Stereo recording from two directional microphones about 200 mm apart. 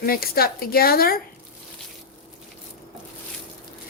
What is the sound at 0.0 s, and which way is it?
Speech, 50° left (ahead or behind).